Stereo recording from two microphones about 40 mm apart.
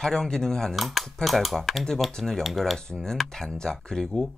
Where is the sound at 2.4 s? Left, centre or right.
Centre.